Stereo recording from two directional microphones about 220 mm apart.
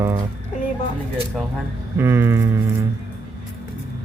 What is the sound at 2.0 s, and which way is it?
Speech, 10° right (ahead or behind).